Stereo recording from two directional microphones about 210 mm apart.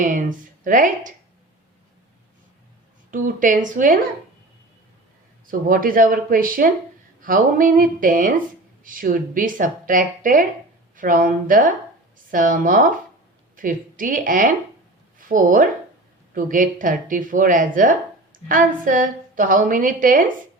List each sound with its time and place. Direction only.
0.0 s speech: 40° right (ahead or behind)
3.1 s speech: 40° right (ahead or behind)
5.5 s speech: 40° right (ahead or behind)